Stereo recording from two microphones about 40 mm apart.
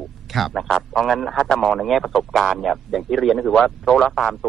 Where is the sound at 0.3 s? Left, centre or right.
Centre.